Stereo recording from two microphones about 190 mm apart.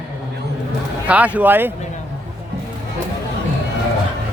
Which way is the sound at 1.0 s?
5° right (ahead or behind).